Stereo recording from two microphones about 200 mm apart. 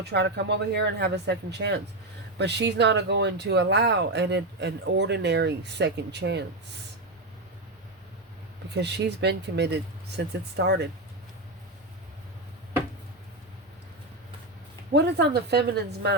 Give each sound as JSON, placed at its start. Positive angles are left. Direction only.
{"t": 0.0, "sound": "speech", "side_deg": -55}
{"t": 8.7, "sound": "speech", "side_deg": -60}
{"t": 14.9, "sound": "speech", "side_deg": -55}